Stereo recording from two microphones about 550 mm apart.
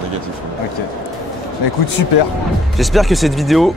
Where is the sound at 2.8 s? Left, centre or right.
Centre.